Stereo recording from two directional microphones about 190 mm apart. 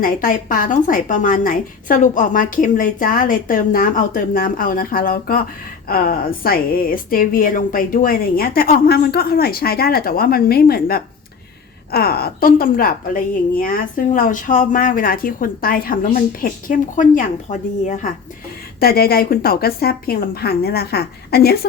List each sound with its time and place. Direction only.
0.0 s a woman's voice: 45° left (ahead or behind)
18.8 s a woman's voice: 55° left (ahead or behind)